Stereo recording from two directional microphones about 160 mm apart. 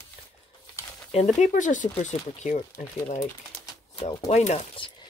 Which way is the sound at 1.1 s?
50° left (ahead or behind).